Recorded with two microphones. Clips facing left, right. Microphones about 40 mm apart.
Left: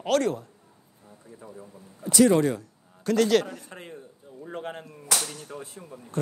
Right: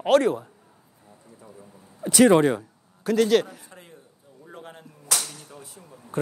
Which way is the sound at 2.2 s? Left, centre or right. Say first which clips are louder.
Right 4 dB; right.